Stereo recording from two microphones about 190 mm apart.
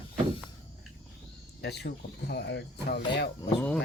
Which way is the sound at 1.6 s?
60° left (ahead or behind).